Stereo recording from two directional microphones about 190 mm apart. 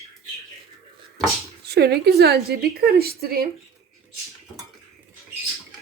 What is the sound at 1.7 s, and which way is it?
A woman's voice, 60° right (ahead or behind).